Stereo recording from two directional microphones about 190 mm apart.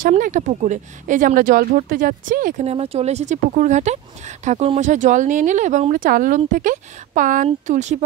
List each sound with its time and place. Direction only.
0.0 s speech: 40° right (ahead or behind)